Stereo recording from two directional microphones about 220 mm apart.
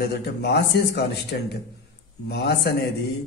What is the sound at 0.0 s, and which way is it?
A man's voice, 50° left (ahead or behind).